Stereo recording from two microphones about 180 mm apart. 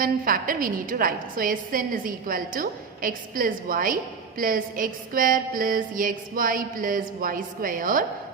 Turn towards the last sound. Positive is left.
turn(degrees=-50)  # may be behind; listen again after turning